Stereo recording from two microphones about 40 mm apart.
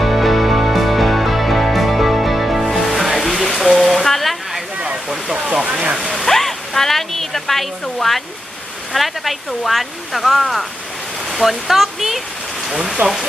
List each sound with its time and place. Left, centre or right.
0.0 s music: centre
5.0 s a sound: centre
6.2 s music: centre
8.9 s speech: centre
13.0 s speech: right